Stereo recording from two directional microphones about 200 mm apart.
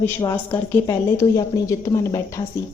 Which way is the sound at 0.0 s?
15° left (ahead or behind).